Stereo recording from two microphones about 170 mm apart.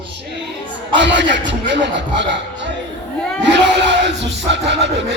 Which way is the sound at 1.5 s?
90° right.